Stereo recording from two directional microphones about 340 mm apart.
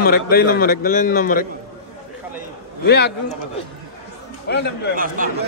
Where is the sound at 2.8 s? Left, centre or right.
Left.